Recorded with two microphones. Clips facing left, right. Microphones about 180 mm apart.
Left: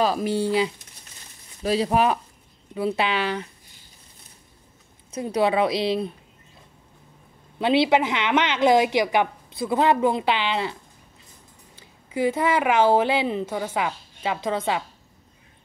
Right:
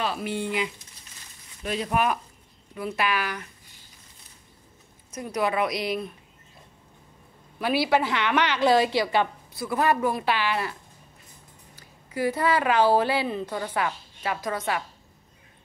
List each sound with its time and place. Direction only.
0.0 s a woman's voice: 40° left (ahead or behind)
5.1 s a woman's voice: 30° left (ahead or behind)
7.5 s a woman's voice: 25° left (ahead or behind)
12.1 s a woman's voice: 20° left (ahead or behind)